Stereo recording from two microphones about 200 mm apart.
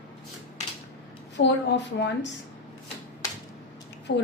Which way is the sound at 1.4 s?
60° left (ahead or behind).